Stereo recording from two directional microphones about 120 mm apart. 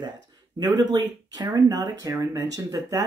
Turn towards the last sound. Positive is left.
turn(degrees=-30)  # may be behind; listen again after turning